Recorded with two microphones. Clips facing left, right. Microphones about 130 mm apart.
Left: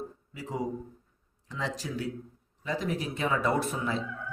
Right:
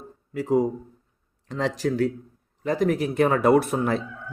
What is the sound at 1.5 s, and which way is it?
Speech, 70° right (ahead or behind).